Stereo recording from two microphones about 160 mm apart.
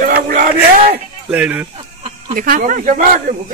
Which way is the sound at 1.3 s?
5° right (ahead or behind).